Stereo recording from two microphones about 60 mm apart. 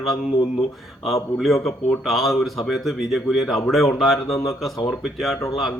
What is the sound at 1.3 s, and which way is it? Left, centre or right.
Speech, centre.